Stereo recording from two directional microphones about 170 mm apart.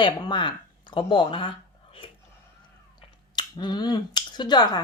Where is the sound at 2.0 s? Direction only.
30° left (ahead or behind).